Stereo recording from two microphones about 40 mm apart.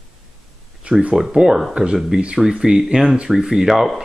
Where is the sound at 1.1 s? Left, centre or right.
Centre.